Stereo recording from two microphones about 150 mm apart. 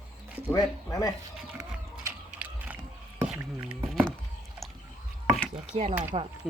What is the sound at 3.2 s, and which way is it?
Whispering, 10° right (ahead or behind).